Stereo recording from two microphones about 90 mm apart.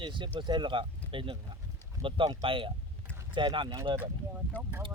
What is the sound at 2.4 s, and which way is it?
Speech, 75° right (ahead or behind).